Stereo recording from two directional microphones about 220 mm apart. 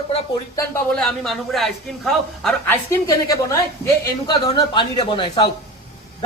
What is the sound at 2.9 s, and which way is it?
A woman's voice, 15° left (ahead or behind).